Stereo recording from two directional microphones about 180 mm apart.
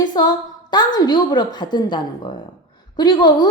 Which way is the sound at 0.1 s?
20° left (ahead or behind).